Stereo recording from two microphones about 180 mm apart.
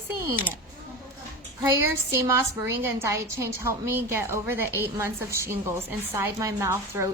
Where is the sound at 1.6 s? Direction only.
15° right (ahead or behind).